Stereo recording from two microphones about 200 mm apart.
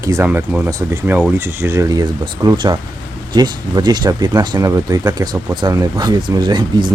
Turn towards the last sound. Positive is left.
turn(degrees=-20)  # may be behind; listen again after turning